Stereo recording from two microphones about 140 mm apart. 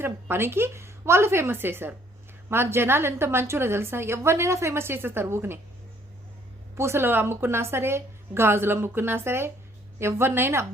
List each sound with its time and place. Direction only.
0.0 s a woman's voice: 15° right (ahead or behind)
6.7 s a woman's voice: 20° right (ahead or behind)